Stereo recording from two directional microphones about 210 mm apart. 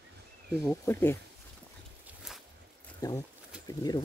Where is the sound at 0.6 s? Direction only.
10° left (ahead or behind).